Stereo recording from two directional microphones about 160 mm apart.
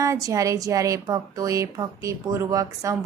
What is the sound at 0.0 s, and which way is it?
A woman's voice, 20° right (ahead or behind).